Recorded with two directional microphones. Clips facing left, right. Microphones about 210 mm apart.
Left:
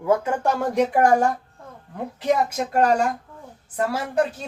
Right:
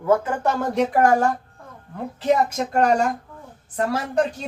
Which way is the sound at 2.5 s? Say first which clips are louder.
Even; 5° left (ahead or behind).